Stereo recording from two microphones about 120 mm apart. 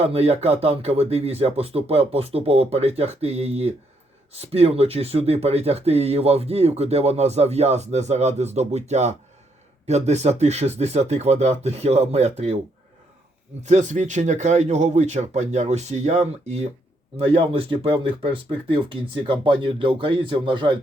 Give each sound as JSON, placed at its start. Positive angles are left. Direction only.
{"t": 0.1, "sound": "speech", "side_deg": -60}
{"t": 13.6, "sound": "speech", "side_deg": -75}